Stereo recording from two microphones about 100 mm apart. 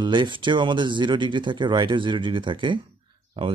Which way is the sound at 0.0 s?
50° right (ahead or behind).